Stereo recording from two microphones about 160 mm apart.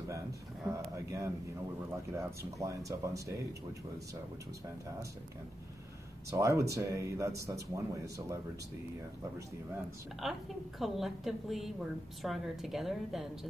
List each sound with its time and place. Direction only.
0.7 s speech: 20° right (ahead or behind)
6.3 s speech: 20° right (ahead or behind)
10.2 s a woman's voice: centre (ahead or behind)